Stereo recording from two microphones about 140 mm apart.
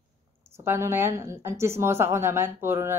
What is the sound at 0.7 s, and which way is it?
A woman's voice, 15° right (ahead or behind).